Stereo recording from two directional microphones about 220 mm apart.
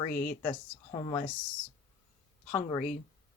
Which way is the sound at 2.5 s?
5° left (ahead or behind).